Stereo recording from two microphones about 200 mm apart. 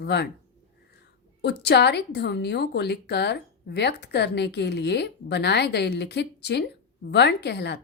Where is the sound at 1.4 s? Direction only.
55° left (ahead or behind).